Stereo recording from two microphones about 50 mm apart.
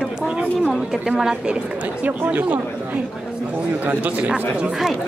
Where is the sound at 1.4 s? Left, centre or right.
Right.